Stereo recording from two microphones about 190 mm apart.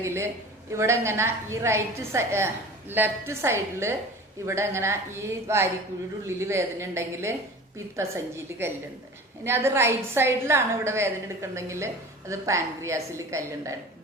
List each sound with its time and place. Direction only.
0.0 s a woman's voice: 15° right (ahead or behind)